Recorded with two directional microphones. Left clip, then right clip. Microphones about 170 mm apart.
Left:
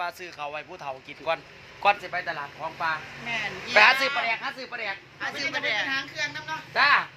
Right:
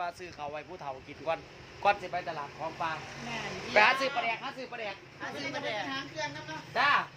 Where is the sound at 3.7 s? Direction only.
15° left (ahead or behind).